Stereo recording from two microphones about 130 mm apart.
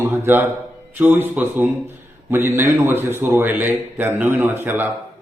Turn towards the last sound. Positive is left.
turn(degrees=-15)  # may be behind; listen again after turning